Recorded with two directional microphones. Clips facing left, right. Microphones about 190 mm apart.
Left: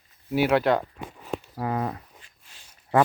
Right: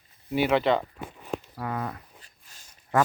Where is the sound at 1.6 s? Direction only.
25° left (ahead or behind).